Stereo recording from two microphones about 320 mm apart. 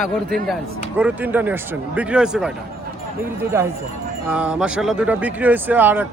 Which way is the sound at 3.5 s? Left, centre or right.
Centre.